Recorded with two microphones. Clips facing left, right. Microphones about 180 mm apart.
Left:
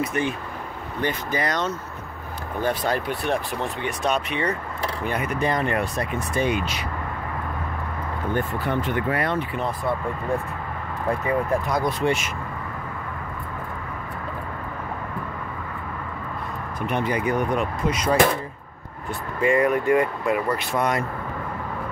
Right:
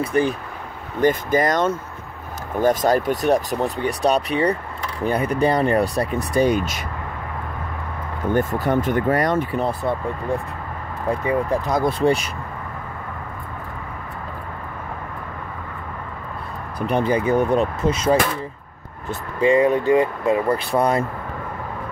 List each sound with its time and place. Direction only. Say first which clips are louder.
0.0 s speech: right 5 dB; 35° right (ahead or behind)
1.0 s speech: right 8 dB; 45° right (ahead or behind)
8.4 s speech: right 6 dB; 45° right (ahead or behind)
11.2 s speech: right 3 dB; 20° right (ahead or behind)
12.0 s speech: right 5 dB; 35° right (ahead or behind)
16.8 s speech: right 5 dB; 35° right (ahead or behind)
19.4 s speech: right 4 dB; 20° right (ahead or behind)